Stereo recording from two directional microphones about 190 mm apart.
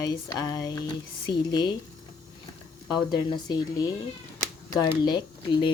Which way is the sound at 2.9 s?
25° left (ahead or behind).